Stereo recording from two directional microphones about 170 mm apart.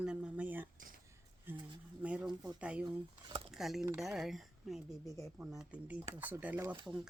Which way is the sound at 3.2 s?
30° right (ahead or behind).